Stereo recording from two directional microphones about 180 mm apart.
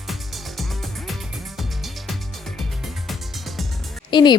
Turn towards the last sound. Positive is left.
turn(degrees=25)  # may be behind; listen again after turning